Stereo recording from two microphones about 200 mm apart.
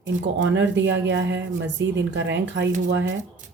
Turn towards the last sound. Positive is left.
turn(degrees=-60)  # may be behind; listen again after turning